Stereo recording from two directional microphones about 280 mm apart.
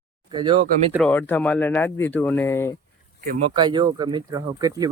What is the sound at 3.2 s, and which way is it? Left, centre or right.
Speech, right.